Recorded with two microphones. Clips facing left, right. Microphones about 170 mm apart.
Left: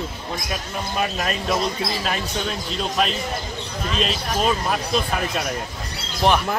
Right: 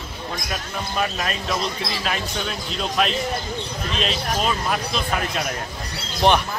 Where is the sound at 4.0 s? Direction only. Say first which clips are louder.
Left 1 dB; centre (ahead or behind).